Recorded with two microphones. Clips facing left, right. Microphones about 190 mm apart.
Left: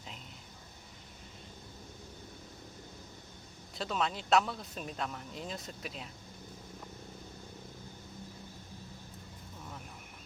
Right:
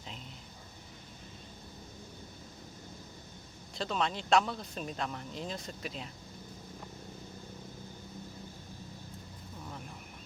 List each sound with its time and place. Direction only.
3.8 s speech: 5° left (ahead or behind)